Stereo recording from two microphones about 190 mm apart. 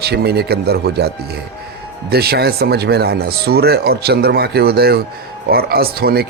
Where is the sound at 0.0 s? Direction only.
60° right (ahead or behind).